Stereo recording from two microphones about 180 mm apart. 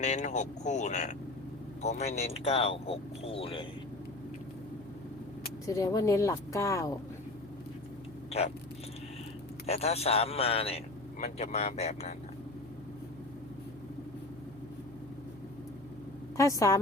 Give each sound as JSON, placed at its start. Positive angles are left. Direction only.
{"t": 0.0, "sound": "speech", "side_deg": 40}
{"t": 5.6, "sound": "a woman's voice", "side_deg": 20}
{"t": 9.6, "sound": "speech", "side_deg": 35}
{"t": 16.4, "sound": "a woman's voice", "side_deg": 15}